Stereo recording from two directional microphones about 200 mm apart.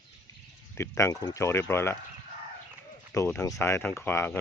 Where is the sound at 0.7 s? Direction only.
15° left (ahead or behind).